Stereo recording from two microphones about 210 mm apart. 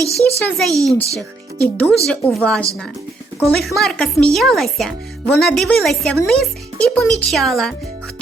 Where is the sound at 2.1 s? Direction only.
5° left (ahead or behind).